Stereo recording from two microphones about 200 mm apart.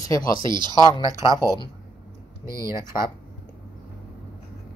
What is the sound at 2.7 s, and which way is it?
Speech, 15° right (ahead or behind).